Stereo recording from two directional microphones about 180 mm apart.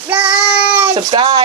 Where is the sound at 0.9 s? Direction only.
25° right (ahead or behind).